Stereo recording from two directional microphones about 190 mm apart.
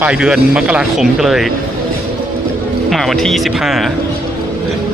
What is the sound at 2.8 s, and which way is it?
Speech, centre (ahead or behind).